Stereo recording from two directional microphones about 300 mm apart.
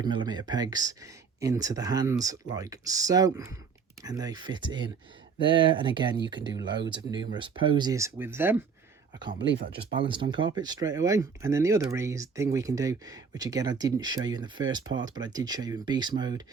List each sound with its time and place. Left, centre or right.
0.0 s speech: centre
9.7 s speech: centre